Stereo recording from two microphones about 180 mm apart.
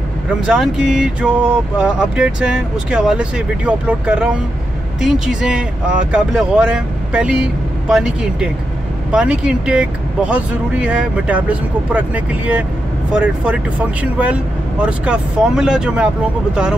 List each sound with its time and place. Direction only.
0.5 s speech: centre (ahead or behind)